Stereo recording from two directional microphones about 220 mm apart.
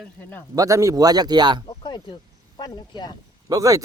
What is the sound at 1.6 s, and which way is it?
Speech, 20° left (ahead or behind).